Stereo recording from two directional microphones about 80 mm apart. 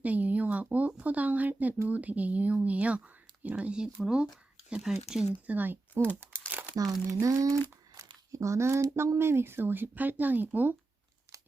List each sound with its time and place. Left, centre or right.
0.0 s a sound: centre
1.9 s speech: centre
5.5 s speech: right
7.1 s speech: right